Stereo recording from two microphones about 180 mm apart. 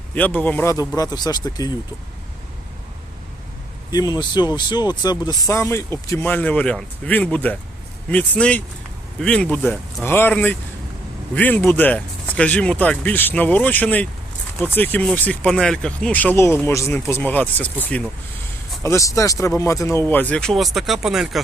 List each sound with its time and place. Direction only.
0.1 s speech: 10° left (ahead or behind)
3.9 s speech: 20° left (ahead or behind); by 21.4 s centre (ahead or behind)